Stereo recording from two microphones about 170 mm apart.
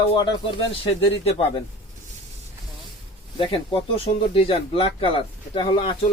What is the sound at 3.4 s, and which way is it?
A man's voice, 30° left (ahead or behind).